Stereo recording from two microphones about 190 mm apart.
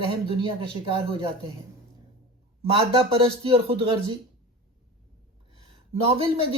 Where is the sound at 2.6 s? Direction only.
30° right (ahead or behind).